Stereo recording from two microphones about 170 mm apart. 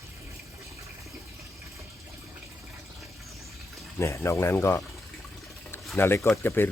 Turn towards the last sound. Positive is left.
turn(degrees=15)  # may be behind; listen again after turning